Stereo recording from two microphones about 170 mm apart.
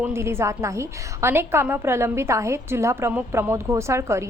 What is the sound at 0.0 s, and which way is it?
A woman's voice, 15° right (ahead or behind).